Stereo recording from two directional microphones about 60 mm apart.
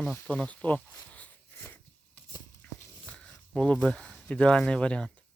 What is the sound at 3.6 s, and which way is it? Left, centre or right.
Speech, centre.